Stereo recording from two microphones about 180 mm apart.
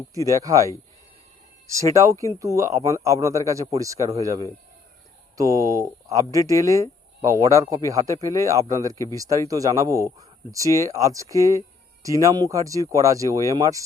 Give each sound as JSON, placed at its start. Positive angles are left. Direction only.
{"t": 0.3, "sound": "speech", "side_deg": -20}
{"t": 1.7, "sound": "speech", "side_deg": -15}
{"t": 5.4, "sound": "speech", "side_deg": -20}